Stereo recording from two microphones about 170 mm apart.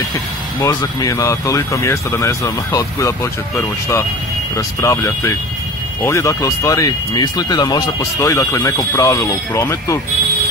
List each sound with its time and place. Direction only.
0.6 s speech: 20° left (ahead or behind)